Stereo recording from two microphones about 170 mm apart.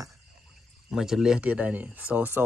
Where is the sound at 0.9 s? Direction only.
Centre (ahead or behind).